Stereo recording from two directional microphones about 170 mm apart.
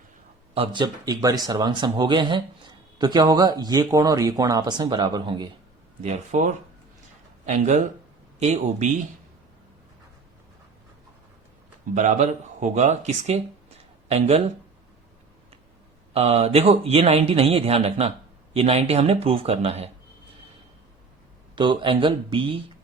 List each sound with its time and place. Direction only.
0.5 s speech: 30° right (ahead or behind)
6.0 s speech: 40° right (ahead or behind)
11.9 s a man's voice: 45° right (ahead or behind)
16.1 s a man's voice: 35° right (ahead or behind)
21.5 s speech: 30° right (ahead or behind)